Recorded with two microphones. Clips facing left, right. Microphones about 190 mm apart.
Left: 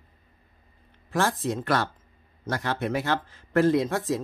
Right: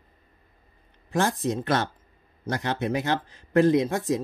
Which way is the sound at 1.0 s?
15° right (ahead or behind).